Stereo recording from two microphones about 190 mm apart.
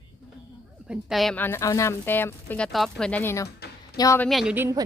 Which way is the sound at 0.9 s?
Centre (ahead or behind).